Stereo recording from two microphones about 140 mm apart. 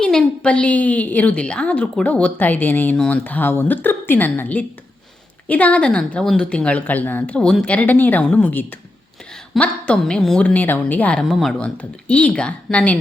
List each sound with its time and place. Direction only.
0.0 s a woman's voice: 5° left (ahead or behind)